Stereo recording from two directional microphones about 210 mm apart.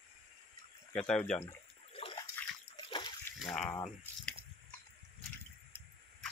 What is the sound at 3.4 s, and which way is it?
Speech, 5° left (ahead or behind).